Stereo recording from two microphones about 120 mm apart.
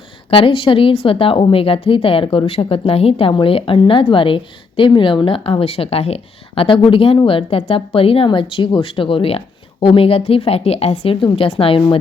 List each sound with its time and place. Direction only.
0.3 s a woman's voice: 50° left (ahead or behind)